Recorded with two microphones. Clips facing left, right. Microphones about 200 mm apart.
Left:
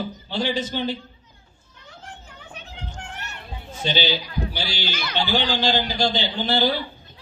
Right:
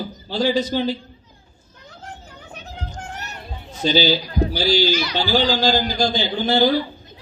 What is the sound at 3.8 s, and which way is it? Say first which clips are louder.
A man's voice: right 6 dB; 40° right (ahead or behind).